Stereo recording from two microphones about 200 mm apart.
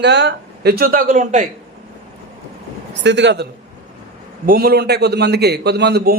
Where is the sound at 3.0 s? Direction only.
60° right (ahead or behind).